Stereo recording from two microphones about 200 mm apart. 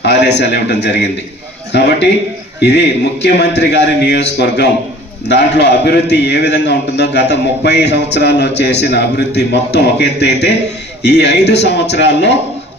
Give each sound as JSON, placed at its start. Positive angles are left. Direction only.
{"t": 0.0, "sound": "a man's voice", "side_deg": 60}